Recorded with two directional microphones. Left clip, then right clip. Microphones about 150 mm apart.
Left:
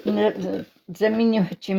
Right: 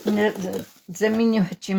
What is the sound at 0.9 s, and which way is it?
Speech, 30° left (ahead or behind).